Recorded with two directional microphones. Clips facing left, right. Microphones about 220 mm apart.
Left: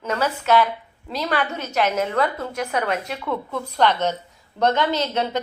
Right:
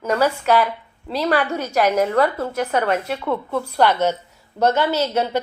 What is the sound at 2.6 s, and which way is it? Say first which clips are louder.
Speech: right 4 dB; 35° right (ahead or behind).